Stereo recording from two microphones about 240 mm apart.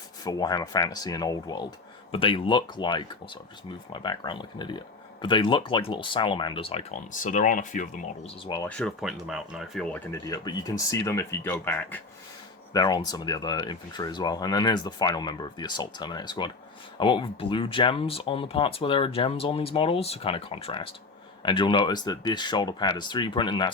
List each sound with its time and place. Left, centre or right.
0.3 s speech: centre; by 8.0 s left
8.4 s speech: centre
8.7 s speech: centre